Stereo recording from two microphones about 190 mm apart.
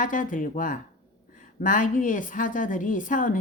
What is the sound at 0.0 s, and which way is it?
A woman's voice, 45° left (ahead or behind).